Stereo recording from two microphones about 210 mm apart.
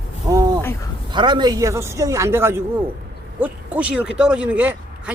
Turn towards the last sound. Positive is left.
turn(degrees=-5)  # may be behind; listen again after turning